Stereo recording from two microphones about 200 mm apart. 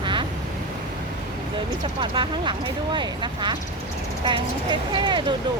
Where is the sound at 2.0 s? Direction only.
25° right (ahead or behind).